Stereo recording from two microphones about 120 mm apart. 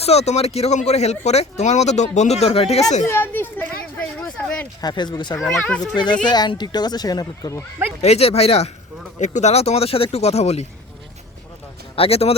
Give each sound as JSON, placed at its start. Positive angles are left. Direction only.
{"t": 0.0, "sound": "speech", "side_deg": 60}
{"t": 3.1, "sound": "a sound", "side_deg": 15}
{"t": 4.8, "sound": "speech", "side_deg": 35}
{"t": 5.4, "sound": "speech", "side_deg": 5}
{"t": 6.2, "sound": "speech", "side_deg": 35}
{"t": 8.0, "sound": "speech", "side_deg": 60}
{"t": 9.1, "sound": "speech", "side_deg": 75}
{"t": 11.9, "sound": "speech", "side_deg": 55}